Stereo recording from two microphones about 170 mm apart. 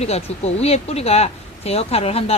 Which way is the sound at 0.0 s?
40° left (ahead or behind).